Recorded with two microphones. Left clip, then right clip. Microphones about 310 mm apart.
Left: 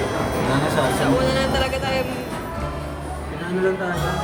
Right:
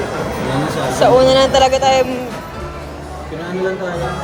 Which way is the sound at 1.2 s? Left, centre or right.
Centre.